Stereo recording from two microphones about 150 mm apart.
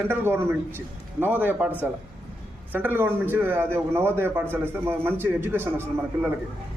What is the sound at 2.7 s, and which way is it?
A man's voice, 15° right (ahead or behind).